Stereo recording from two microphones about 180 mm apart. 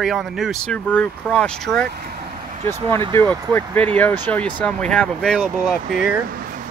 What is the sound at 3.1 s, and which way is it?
Speech, 10° left (ahead or behind).